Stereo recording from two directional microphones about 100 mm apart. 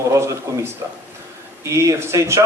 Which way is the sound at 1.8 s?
30° right (ahead or behind).